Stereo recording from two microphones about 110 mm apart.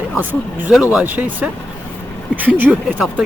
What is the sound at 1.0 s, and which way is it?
Speech, 15° right (ahead or behind).